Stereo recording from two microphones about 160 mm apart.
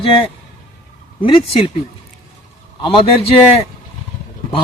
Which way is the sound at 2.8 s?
35° left (ahead or behind).